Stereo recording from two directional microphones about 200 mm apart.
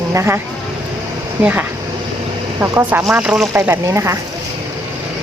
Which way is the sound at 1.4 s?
10° right (ahead or behind).